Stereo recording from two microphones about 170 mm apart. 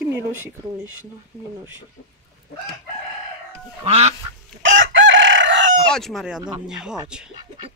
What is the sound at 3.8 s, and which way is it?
Duck, 40° right (ahead or behind).